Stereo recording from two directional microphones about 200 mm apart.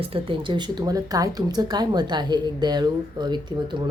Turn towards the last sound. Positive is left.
turn(degrees=-20)  # may be behind; listen again after turning